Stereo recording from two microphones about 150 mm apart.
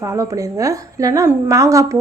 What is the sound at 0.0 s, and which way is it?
A woman's voice, 20° right (ahead or behind).